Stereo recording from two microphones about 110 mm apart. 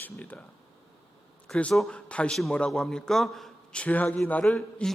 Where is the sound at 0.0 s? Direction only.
15° left (ahead or behind).